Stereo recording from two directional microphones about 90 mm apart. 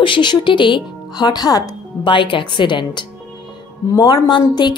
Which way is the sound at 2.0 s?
65° left (ahead or behind).